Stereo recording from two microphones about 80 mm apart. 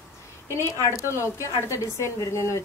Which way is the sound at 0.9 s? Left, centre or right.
Left.